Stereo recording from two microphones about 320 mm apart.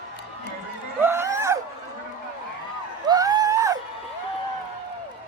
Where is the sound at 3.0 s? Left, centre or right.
Centre.